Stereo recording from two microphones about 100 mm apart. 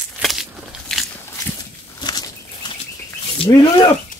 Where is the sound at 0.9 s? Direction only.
5° left (ahead or behind).